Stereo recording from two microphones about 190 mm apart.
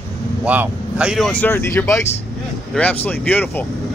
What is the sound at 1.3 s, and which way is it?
Speech, 10° left (ahead or behind).